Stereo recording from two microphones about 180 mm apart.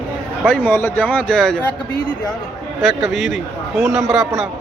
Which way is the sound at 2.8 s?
Centre (ahead or behind).